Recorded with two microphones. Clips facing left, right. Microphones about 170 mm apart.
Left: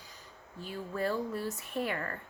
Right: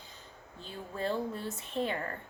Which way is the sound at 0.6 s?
25° right (ahead or behind).